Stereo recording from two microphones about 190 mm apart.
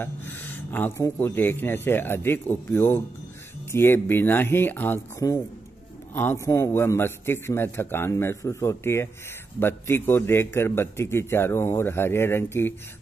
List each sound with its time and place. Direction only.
0.0 s a man's voice: 10° left (ahead or behind)